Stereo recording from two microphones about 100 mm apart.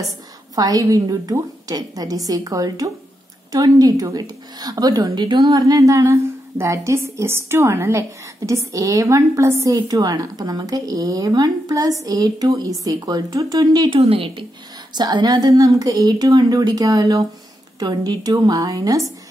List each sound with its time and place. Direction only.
0.6 s a woman's voice: 40° right (ahead or behind)
13.8 s a woman's voice: 70° right (ahead or behind)
15.0 s a woman's voice: 40° right (ahead or behind)